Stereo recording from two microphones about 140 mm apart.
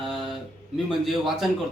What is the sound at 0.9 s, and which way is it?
Speech, centre (ahead or behind).